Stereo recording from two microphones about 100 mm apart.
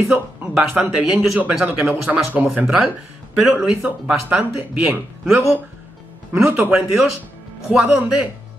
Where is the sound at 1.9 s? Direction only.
15° right (ahead or behind).